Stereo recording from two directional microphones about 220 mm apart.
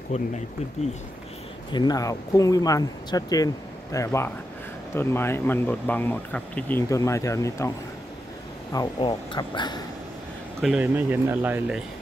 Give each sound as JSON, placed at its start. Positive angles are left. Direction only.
{"t": 0.1, "sound": "speech", "side_deg": 30}
{"t": 1.7, "sound": "speech", "side_deg": 20}
{"t": 8.7, "sound": "speech", "side_deg": 20}
{"t": 10.6, "sound": "speech", "side_deg": -5}